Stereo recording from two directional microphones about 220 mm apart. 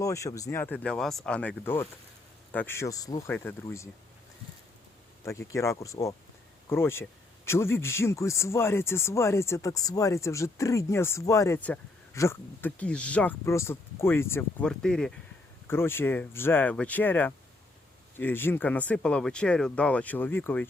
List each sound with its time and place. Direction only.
0.0 s speech: 15° left (ahead or behind)
5.2 s speech: 10° left (ahead or behind)